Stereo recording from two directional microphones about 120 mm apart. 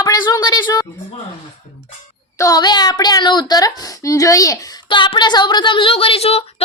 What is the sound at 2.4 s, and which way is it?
Speech, 35° left (ahead or behind).